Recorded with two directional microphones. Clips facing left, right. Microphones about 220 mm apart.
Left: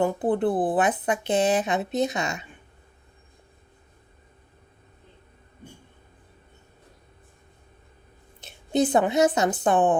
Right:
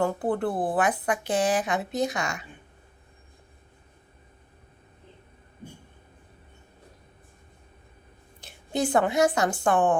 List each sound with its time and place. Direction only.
0.0 s speech: 20° left (ahead or behind)
8.4 s a woman's voice: 20° left (ahead or behind)